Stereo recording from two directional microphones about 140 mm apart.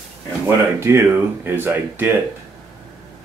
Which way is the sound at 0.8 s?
20° right (ahead or behind).